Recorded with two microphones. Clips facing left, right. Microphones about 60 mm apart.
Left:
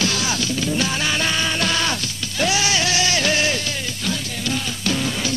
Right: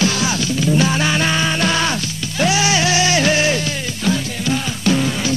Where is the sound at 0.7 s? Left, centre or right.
Right.